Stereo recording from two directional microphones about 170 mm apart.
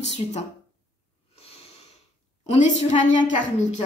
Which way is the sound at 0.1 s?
40° left (ahead or behind).